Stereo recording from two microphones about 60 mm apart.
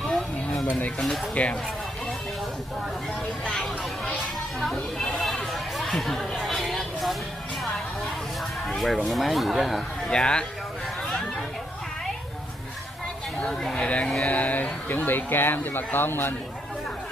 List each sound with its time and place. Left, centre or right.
0.7 s speech: left
3.4 s a sound: centre
4.7 s chatter: centre
8.6 s speech: centre
10.0 s speech: centre
13.4 s speech: centre; by 16.3 s left